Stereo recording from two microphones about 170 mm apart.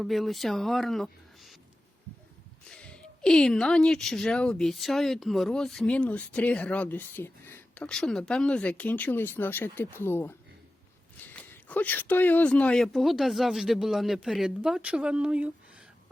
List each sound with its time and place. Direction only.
0.0 s speech: centre (ahead or behind)
2.6 s speech: 5° left (ahead or behind)
11.3 s speech: 10° left (ahead or behind); by 15.5 s 5° right (ahead or behind)